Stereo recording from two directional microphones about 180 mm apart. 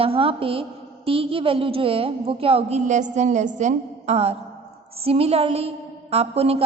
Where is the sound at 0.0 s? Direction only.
30° right (ahead or behind).